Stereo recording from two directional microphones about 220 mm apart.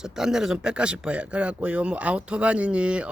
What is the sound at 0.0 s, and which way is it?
Speech, 5° right (ahead or behind).